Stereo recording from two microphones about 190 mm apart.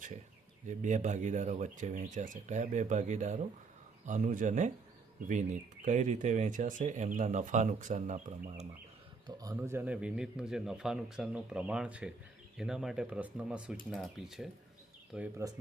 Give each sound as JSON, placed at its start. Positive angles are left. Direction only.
{"t": 0.7, "sound": "speech", "side_deg": -40}
{"t": 9.2, "sound": "a man's voice", "side_deg": -20}